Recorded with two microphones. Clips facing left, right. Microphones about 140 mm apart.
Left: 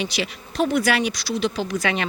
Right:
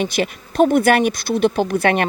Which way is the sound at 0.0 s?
50° right (ahead or behind).